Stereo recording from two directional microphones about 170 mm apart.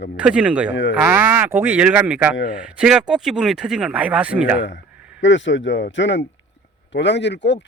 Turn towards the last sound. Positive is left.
turn(degrees=90)